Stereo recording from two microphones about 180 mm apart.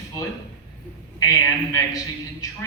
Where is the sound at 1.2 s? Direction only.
20° left (ahead or behind).